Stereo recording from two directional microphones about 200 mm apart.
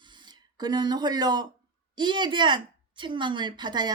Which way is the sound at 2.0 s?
20° right (ahead or behind).